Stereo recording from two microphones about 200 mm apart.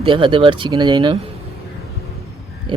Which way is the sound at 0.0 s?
25° right (ahead or behind).